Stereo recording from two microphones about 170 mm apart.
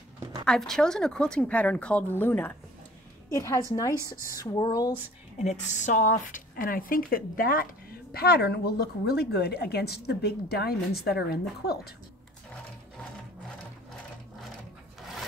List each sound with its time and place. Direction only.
0.5 s a woman's voice: 5° left (ahead or behind); by 3.6 s 20° left (ahead or behind)
3.9 s speech: 15° right (ahead or behind)
4.4 s speech: 25° left (ahead or behind)
5.4 s speech: 45° left (ahead or behind); by 11.9 s 65° left (ahead or behind)